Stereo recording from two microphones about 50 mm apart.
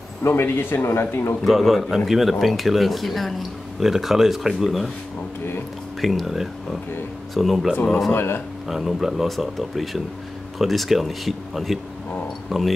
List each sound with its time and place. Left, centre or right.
0.3 s a man's voice: left
1.4 s speech: centre
5.9 s speech: centre
8.1 s a man's voice: left
8.6 s speech: centre